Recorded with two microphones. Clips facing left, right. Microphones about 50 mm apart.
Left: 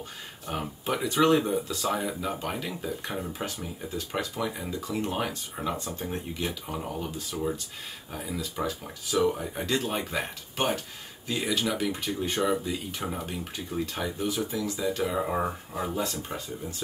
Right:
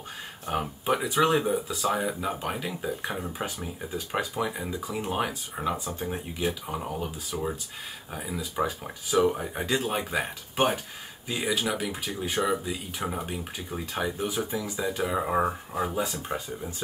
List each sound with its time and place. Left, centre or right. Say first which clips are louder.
0.5 s speech: right 4 dB; centre
7.2 s speech: left 1 dB; centre